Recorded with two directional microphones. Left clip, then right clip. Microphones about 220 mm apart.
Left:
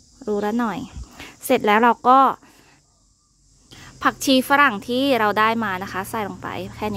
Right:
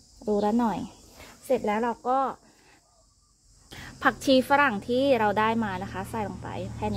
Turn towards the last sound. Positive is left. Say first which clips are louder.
# left 5 dB
turn(degrees=25)  # may be behind; listen again after turning